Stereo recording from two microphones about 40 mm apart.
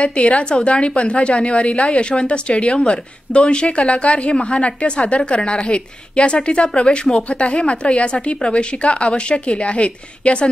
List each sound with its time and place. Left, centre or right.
0.0 s a woman's voice: left